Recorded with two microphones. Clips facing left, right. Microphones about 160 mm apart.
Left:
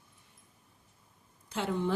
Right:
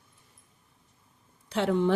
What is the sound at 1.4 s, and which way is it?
Speech, 70° right (ahead or behind).